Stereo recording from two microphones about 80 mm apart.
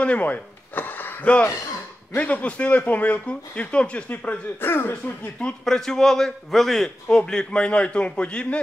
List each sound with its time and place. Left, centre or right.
0.0 s a sound: centre
2.1 s speech: centre
5.4 s a man's voice: centre